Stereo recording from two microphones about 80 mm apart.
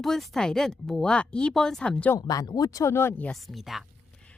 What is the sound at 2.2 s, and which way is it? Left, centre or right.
Speech, left.